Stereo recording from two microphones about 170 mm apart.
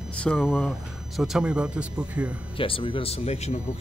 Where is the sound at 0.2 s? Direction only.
5° left (ahead or behind); by 2.3 s 10° right (ahead or behind).